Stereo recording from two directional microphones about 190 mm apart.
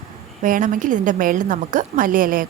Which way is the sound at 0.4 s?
45° right (ahead or behind).